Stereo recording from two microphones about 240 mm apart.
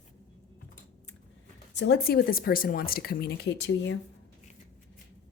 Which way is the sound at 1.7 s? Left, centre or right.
Left.